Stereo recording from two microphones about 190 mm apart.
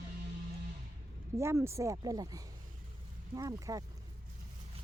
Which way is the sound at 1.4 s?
15° right (ahead or behind).